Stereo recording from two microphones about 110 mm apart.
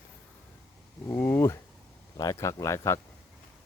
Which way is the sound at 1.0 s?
20° left (ahead or behind).